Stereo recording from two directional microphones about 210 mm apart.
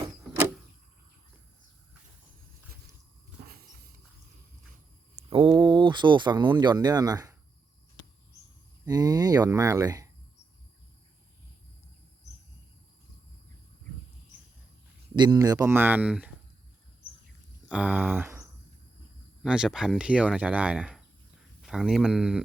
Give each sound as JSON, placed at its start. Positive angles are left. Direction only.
{"t": 5.1, "sound": "speech", "side_deg": -25}
{"t": 8.8, "sound": "speech", "side_deg": -15}
{"t": 15.1, "sound": "speech", "side_deg": -20}
{"t": 17.7, "sound": "speech", "side_deg": -5}